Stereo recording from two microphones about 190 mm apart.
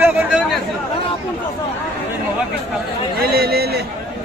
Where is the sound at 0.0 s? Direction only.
5° right (ahead or behind).